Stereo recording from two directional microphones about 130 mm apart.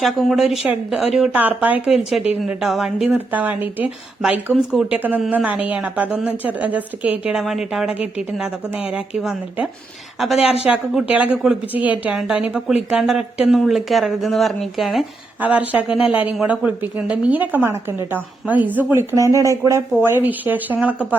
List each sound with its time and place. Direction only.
0.0 s a woman's voice: centre (ahead or behind)
15.4 s a woman's voice: 10° right (ahead or behind)
19.1 s speech: 25° right (ahead or behind)